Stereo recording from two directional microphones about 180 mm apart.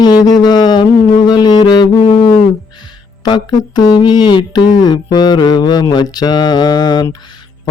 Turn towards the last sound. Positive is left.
turn(degrees=20)  # may be behind; listen again after turning